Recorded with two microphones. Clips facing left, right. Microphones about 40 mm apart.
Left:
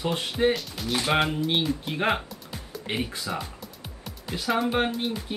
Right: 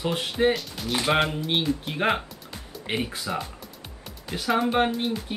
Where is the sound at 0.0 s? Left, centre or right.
Centre.